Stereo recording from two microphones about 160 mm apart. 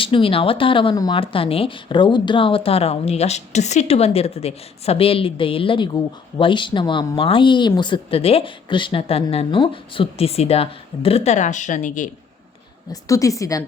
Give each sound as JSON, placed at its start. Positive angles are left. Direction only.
{"t": 0.0, "sound": "speech", "side_deg": 35}
{"t": 12.9, "sound": "a woman's voice", "side_deg": 20}